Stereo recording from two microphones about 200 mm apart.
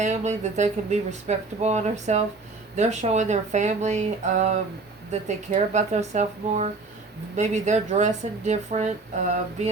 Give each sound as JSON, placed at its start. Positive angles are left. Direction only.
{"t": 0.0, "sound": "speech", "side_deg": -35}